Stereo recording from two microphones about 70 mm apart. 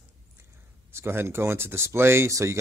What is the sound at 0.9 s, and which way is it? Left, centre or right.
Speech, right.